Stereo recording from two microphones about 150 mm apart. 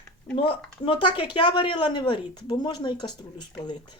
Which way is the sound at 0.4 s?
35° left (ahead or behind).